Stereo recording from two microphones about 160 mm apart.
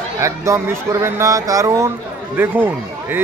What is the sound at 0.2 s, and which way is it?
A man's voice, 15° right (ahead or behind).